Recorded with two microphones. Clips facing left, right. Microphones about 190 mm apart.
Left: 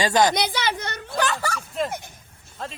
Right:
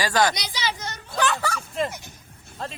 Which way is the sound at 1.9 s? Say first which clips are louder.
Left 3 dB; 55° left (ahead or behind).